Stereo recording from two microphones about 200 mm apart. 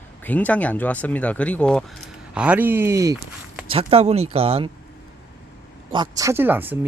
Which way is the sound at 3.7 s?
30° right (ahead or behind).